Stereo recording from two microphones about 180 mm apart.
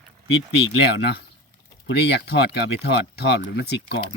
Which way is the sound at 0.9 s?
70° left (ahead or behind).